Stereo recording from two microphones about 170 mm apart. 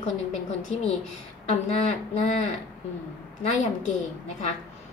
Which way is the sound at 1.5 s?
40° left (ahead or behind).